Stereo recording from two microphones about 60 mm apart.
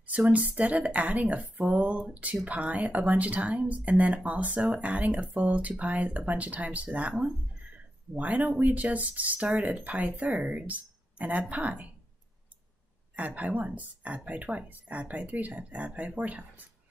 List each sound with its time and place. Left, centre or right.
0.0 s speech: right
13.1 s speech: right